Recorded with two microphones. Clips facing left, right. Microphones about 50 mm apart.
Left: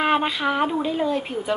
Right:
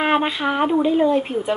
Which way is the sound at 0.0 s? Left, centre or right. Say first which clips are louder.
Right 2 dB; centre.